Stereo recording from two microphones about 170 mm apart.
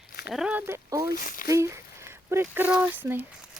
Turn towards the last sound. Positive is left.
turn(degrees=-10)  # may be behind; listen again after turning